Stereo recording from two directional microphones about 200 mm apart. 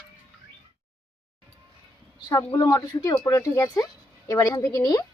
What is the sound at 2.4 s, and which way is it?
Speech, 20° left (ahead or behind).